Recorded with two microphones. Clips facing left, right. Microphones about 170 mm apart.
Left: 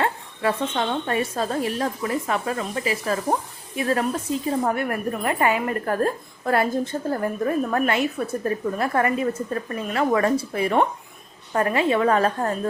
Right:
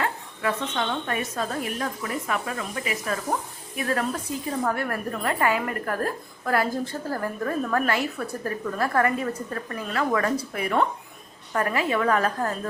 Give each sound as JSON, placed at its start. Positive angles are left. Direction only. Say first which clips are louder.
{"t": 0.0, "sound": "speech", "louder": "left 4 dB", "side_deg": 30}